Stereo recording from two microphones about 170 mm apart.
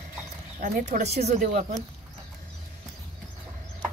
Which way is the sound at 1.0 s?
40° right (ahead or behind).